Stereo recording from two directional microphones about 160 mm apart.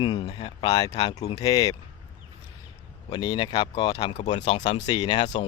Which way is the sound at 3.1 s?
30° left (ahead or behind).